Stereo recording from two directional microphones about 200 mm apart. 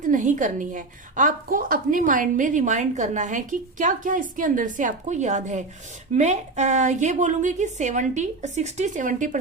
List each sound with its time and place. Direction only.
0.0 s a woman's voice: 40° right (ahead or behind)